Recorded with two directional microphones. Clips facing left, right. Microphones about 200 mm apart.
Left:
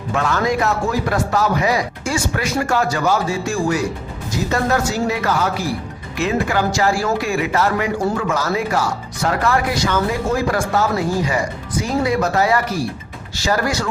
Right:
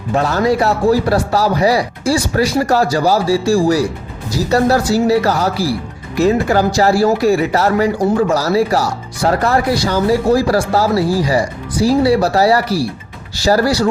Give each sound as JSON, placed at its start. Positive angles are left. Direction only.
{"t": 0.1, "sound": "speech", "side_deg": -35}